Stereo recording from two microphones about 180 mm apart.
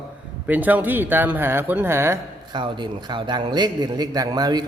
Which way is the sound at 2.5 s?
25° right (ahead or behind).